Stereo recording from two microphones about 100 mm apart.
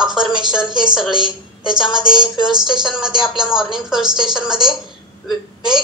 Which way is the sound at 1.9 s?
45° right (ahead or behind).